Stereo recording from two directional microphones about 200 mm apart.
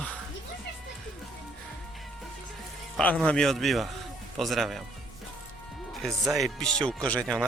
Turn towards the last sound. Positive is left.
turn(degrees=5)  # may be behind; listen again after turning